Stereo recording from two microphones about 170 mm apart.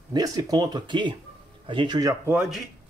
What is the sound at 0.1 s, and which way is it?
Speech, 20° right (ahead or behind).